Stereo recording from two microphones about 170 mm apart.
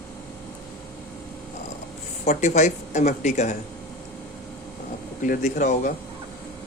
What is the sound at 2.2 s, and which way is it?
Speech, 45° left (ahead or behind).